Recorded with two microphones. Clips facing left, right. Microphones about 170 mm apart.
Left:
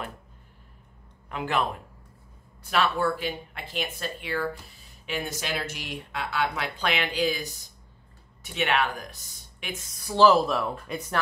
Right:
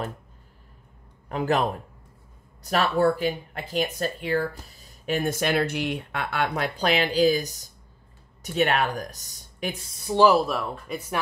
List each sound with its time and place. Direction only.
1.3 s speech: 40° right (ahead or behind); by 10.2 s 25° right (ahead or behind)
10.2 s speech: 5° right (ahead or behind)